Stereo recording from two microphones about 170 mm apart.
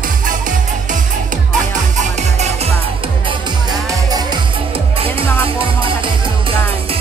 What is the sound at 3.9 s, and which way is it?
Music, 20° right (ahead or behind).